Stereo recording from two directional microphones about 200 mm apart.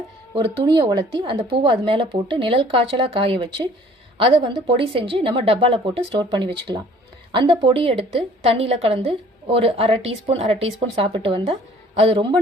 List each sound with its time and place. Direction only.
0.6 s a woman's voice: 20° right (ahead or behind)